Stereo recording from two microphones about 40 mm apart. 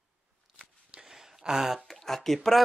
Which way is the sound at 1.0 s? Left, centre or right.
Centre.